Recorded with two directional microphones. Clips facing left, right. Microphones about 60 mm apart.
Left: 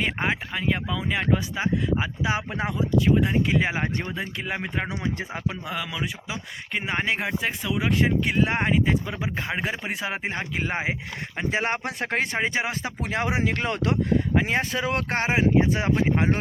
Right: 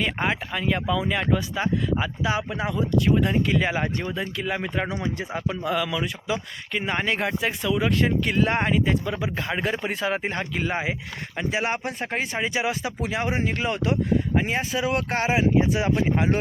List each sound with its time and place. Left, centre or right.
0.2 s speech: centre
2.3 s speech: left
3.0 s speech: centre
5.6 s speech: centre
7.7 s speech: centre
10.6 s speech: left
11.5 s speech: left
11.9 s speech: left
12.4 s speech: left
13.2 s speech: left